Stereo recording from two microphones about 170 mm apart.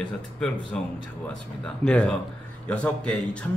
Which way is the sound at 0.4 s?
5° left (ahead or behind).